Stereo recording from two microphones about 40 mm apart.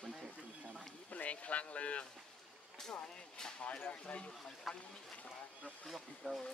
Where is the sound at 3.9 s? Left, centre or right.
Left.